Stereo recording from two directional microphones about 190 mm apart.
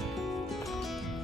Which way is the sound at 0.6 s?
Centre (ahead or behind).